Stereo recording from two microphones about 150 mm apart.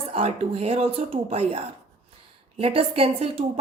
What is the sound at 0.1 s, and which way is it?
Speech, 40° right (ahead or behind).